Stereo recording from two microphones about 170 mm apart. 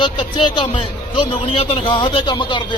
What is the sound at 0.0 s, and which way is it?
A man's voice, 30° left (ahead or behind).